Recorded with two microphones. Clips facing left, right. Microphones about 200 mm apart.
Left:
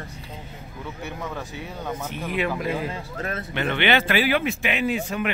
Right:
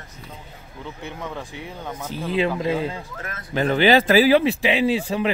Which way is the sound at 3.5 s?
35° right (ahead or behind).